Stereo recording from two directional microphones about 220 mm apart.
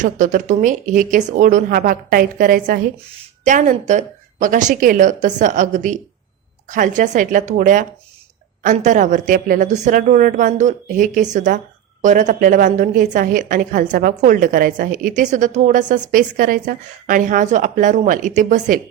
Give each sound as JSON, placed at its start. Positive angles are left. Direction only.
{"t": 0.0, "sound": "a woman's voice", "side_deg": -35}